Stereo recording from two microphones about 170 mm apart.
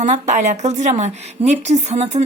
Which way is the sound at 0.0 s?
45° right (ahead or behind).